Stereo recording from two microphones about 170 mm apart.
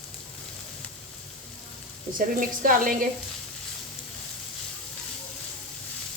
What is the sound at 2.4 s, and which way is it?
Speech, 55° right (ahead or behind).